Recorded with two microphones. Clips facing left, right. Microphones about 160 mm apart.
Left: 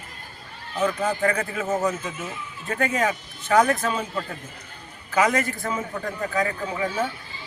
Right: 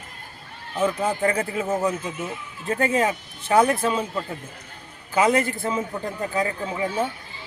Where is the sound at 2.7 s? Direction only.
30° right (ahead or behind).